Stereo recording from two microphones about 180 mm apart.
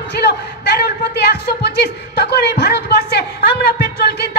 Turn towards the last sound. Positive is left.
turn(degrees=70)  # may be behind; listen again after turning